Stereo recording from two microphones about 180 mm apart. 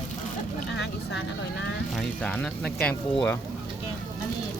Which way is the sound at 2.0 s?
5° left (ahead or behind).